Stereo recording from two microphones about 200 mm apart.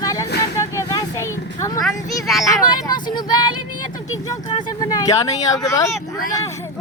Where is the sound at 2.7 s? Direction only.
20° left (ahead or behind).